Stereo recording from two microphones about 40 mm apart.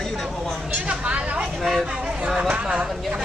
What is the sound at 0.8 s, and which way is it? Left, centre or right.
Speech, right.